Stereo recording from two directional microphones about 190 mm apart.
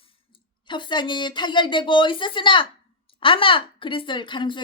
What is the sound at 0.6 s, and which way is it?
Speech, 25° left (ahead or behind).